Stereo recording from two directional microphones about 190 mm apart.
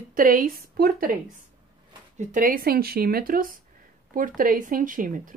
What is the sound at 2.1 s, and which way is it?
Speech, 45° right (ahead or behind).